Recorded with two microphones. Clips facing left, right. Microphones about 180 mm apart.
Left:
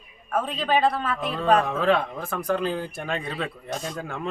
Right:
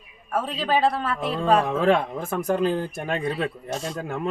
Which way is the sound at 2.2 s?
20° right (ahead or behind).